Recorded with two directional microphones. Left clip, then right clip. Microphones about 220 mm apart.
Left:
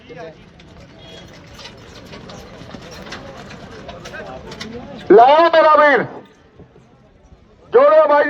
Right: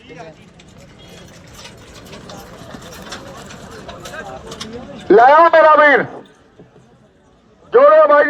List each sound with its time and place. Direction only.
1.5 s a sound: 5° right (ahead or behind)
5.0 s a man's voice: 20° right (ahead or behind)
7.7 s a man's voice: 40° right (ahead or behind)